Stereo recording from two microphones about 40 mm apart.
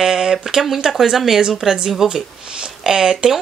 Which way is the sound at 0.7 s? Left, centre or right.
Centre.